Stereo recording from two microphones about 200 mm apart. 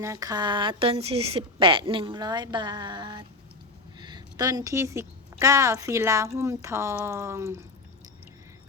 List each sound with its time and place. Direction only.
0.0 s a woman's voice: 15° right (ahead or behind)